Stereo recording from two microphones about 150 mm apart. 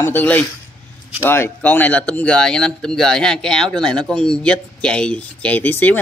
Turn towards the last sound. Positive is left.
turn(degrees=10)  # may be behind; listen again after turning